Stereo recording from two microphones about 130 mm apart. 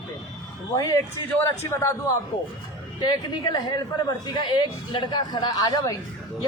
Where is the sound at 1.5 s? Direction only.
20° left (ahead or behind).